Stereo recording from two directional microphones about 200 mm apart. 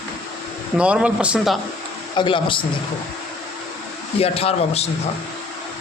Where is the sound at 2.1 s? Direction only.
25° left (ahead or behind).